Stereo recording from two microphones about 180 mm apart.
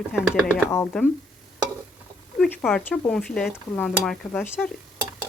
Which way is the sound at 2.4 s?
5° left (ahead or behind).